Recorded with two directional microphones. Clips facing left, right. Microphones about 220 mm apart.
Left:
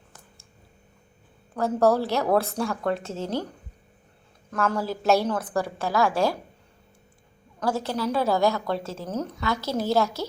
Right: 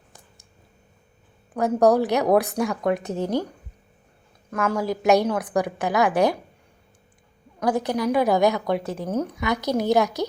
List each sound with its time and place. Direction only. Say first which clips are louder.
1.5 s a woman's voice: right 3 dB; 15° right (ahead or behind)
4.5 s a woman's voice: right 2 dB; 10° right (ahead or behind)
7.6 s a woman's voice: right 4 dB; 15° right (ahead or behind)